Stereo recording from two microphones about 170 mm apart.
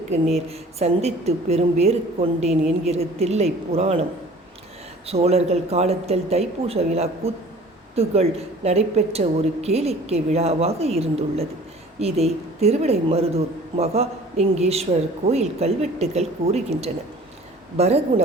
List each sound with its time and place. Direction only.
0.4 s a woman's voice: 40° right (ahead or behind)
5.0 s a woman's voice: 35° right (ahead or behind)